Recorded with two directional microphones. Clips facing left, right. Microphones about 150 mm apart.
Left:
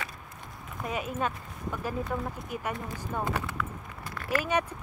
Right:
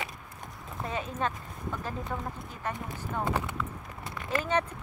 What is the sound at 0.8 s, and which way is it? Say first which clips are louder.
Speech: left 1 dB; 10° left (ahead or behind).